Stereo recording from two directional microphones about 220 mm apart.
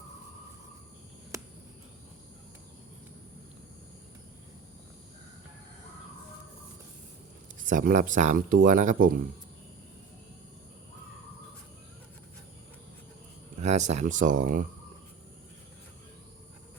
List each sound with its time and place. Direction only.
7.7 s speech: 35° right (ahead or behind)
13.6 s speech: 30° right (ahead or behind)